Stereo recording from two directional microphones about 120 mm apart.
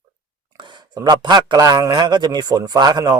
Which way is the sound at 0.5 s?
40° right (ahead or behind).